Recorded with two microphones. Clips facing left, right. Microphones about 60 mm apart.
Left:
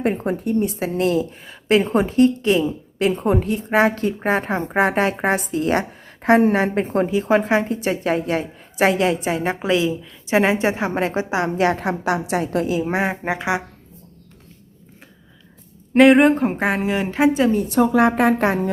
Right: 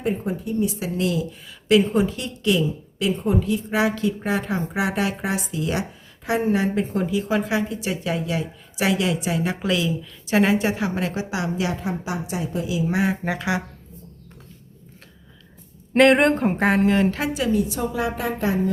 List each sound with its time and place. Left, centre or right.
0.0 s a woman's voice: left
11.9 s a woman's voice: left
12.6 s speech: left
12.9 s speech: left
16.0 s speech: centre
17.2 s a woman's voice: left